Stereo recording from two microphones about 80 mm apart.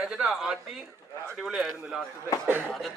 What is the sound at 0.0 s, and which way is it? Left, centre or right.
Speech, centre.